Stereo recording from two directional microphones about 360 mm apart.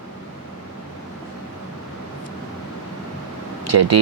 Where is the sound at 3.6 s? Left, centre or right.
Right.